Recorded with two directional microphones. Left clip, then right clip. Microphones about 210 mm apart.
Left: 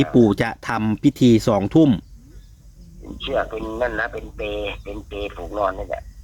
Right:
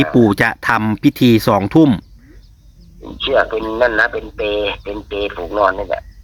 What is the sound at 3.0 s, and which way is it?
A man's voice, 45° right (ahead or behind).